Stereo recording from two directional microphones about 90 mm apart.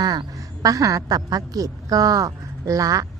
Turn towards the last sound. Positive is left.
turn(degrees=-40)  # may be behind; listen again after turning